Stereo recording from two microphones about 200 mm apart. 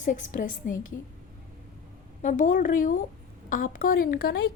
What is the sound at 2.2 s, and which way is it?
A woman's voice, 40° left (ahead or behind).